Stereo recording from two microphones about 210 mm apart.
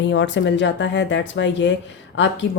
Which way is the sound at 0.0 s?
60° left (ahead or behind).